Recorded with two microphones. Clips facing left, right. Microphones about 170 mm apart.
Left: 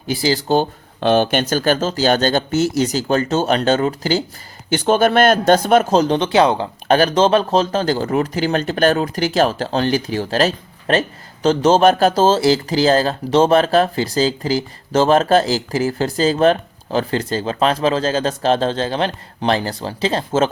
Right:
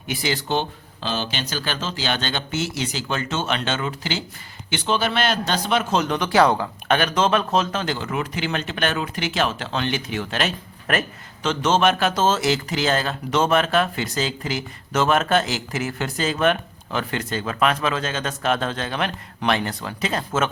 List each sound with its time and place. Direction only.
0.1 s speech: 35° left (ahead or behind)
0.9 s a man's voice: 60° left (ahead or behind); by 6.7 s 20° left (ahead or behind)
6.8 s speech: 35° left (ahead or behind)